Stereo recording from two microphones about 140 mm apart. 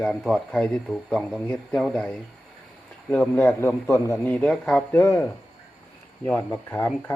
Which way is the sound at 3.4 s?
15° left (ahead or behind).